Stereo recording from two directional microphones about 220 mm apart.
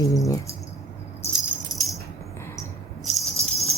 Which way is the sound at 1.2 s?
15° left (ahead or behind).